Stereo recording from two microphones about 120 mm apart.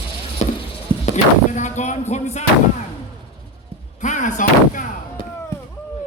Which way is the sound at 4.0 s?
90° left.